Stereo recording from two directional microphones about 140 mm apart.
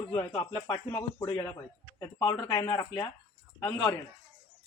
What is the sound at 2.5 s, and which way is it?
Speech, 30° left (ahead or behind).